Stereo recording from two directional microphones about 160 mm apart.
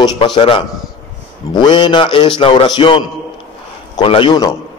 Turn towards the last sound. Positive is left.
turn(degrees=25)  # may be behind; listen again after turning